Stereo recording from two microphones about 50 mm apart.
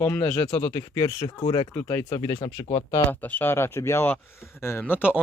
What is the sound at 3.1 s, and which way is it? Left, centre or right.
Speech, left.